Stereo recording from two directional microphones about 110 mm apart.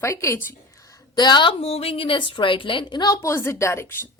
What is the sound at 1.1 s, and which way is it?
Speech, 45° left (ahead or behind).